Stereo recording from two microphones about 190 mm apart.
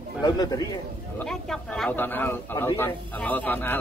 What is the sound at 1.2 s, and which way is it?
A man's voice, centre (ahead or behind).